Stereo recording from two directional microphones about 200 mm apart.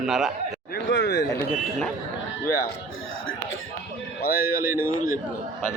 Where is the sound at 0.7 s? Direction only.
60° left (ahead or behind).